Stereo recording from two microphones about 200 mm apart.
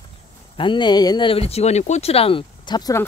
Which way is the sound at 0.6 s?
25° left (ahead or behind).